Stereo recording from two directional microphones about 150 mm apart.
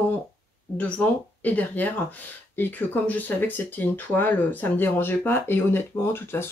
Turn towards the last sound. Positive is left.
turn(degrees=15)  # may be behind; listen again after turning